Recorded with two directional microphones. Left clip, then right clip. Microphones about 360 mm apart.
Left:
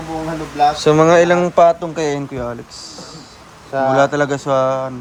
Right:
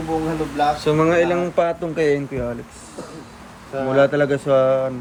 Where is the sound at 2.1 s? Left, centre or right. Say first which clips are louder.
Even; centre.